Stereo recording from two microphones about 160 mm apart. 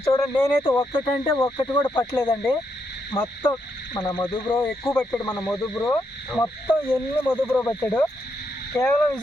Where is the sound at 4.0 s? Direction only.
25° left (ahead or behind).